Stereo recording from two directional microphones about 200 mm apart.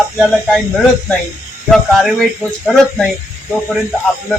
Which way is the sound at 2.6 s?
5° left (ahead or behind).